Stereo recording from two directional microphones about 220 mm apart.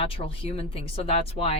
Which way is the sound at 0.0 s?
25° left (ahead or behind).